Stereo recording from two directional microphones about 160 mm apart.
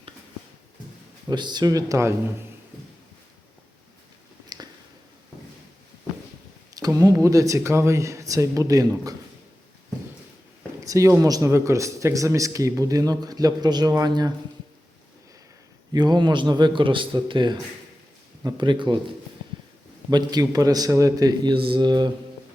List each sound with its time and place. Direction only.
1.3 s speech: 25° right (ahead or behind)
4.4 s a sound: 25° right (ahead or behind)
6.7 s speech: 20° right (ahead or behind)
10.8 s speech: 20° right (ahead or behind)
15.9 s speech: 25° right (ahead or behind)